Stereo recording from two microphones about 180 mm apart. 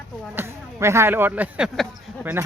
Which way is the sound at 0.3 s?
15° right (ahead or behind).